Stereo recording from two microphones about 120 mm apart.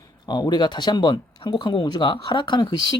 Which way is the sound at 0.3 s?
40° left (ahead or behind).